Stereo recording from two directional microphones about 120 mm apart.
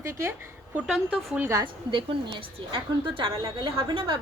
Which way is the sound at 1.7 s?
45° right (ahead or behind).